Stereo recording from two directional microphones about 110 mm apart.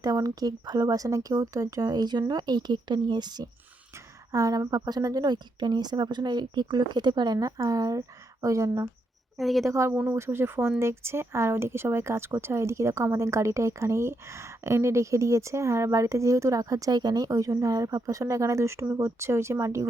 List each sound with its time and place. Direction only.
0.0 s a woman's voice: 35° right (ahead or behind)
9.4 s a woman's voice: centre (ahead or behind)
9.6 s speech: 25° right (ahead or behind)